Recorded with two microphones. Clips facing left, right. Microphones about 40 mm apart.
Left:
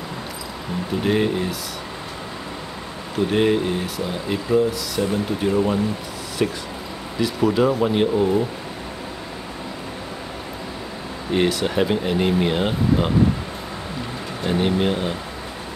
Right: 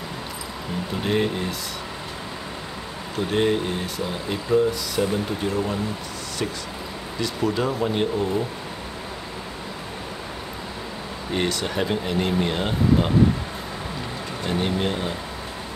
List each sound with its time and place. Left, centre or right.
1.0 s speech: centre
3.3 s speech: centre
7.2 s speech: centre
11.3 s speech: centre
14.4 s speech: centre